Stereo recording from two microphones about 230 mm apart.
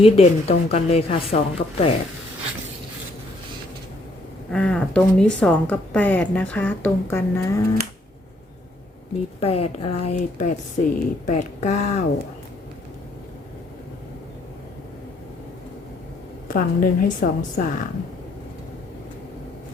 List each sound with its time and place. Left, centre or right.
0.0 s speech: left
4.5 s speech: centre
9.4 s speech: left
16.5 s a woman's voice: left